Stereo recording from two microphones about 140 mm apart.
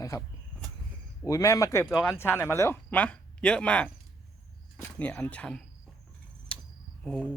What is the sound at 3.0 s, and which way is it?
Speech, 5° left (ahead or behind).